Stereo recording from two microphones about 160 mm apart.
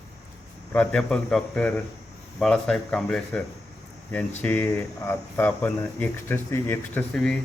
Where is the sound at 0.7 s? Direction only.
5° left (ahead or behind).